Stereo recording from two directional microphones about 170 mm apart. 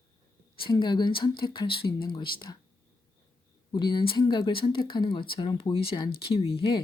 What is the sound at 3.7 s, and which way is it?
Speech, 25° left (ahead or behind).